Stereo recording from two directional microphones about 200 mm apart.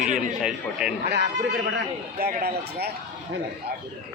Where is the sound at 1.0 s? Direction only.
60° right (ahead or behind).